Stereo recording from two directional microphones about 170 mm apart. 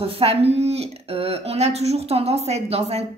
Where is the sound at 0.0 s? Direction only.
35° right (ahead or behind).